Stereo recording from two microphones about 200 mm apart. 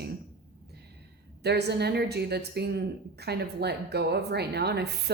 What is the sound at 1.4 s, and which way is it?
A woman's voice, 55° right (ahead or behind).